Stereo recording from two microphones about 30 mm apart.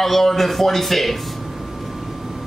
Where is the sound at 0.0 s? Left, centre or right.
Centre.